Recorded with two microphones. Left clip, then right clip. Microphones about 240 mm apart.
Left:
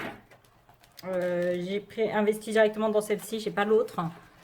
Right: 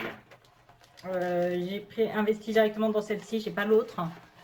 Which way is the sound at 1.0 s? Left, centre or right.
Left.